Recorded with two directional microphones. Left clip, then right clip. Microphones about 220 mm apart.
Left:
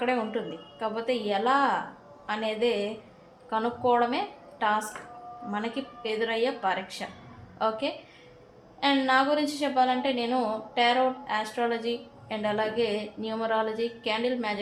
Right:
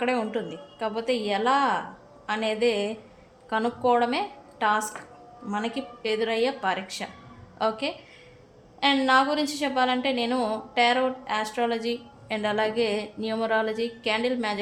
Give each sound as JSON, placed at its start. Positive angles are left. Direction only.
{"t": 0.0, "sound": "a woman's voice", "side_deg": -25}